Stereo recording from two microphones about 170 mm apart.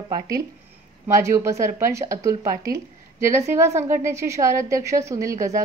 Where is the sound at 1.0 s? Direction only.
15° right (ahead or behind).